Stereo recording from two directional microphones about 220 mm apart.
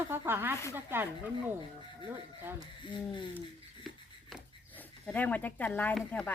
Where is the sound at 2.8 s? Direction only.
20° left (ahead or behind).